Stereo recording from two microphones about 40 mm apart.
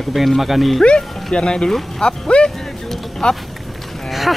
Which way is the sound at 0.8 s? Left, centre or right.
Left.